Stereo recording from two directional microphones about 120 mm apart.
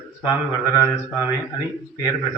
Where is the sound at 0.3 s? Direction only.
30° left (ahead or behind).